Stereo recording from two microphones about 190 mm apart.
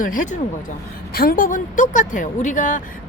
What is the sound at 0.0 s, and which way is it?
Speech, 45° left (ahead or behind).